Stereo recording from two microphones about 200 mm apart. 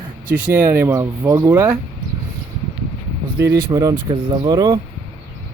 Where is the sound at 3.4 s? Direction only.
20° right (ahead or behind).